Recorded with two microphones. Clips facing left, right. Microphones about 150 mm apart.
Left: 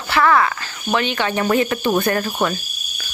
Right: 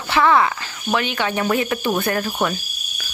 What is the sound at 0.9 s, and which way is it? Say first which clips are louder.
Speech: left 1 dB; 5° right (ahead or behind).